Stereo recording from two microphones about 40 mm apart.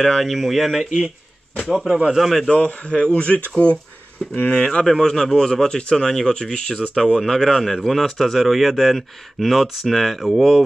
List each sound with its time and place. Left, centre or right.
0.2 s speech: centre
2.1 s speech: centre
2.5 s speech: left
5.0 s speech: centre
7.2 s speech: centre